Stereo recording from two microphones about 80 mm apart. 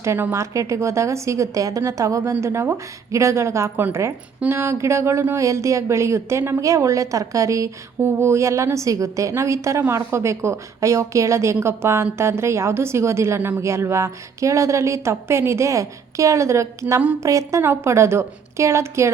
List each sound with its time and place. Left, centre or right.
0.0 s a woman's voice: right
6.6 s a woman's voice: right